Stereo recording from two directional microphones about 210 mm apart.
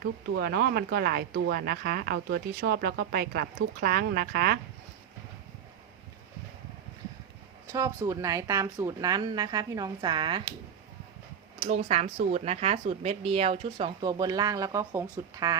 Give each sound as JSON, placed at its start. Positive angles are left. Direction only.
{"t": 0.0, "sound": "speech", "side_deg": -50}
{"t": 7.7, "sound": "speech", "side_deg": -15}
{"t": 11.7, "sound": "speech", "side_deg": -35}
{"t": 14.0, "sound": "speech", "side_deg": -20}